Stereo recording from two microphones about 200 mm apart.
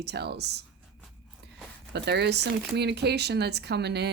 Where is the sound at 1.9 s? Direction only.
55° right (ahead or behind).